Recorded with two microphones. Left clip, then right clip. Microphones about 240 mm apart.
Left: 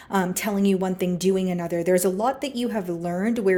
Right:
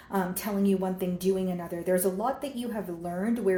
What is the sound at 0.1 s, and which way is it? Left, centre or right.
A woman's voice, left.